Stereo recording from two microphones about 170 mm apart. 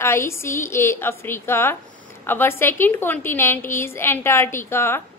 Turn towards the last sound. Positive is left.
turn(degrees=15)  # may be behind; listen again after turning